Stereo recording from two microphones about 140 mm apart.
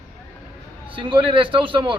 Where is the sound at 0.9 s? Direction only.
35° right (ahead or behind).